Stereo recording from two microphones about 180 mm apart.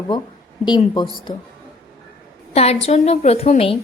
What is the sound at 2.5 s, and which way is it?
A woman's voice, 35° left (ahead or behind).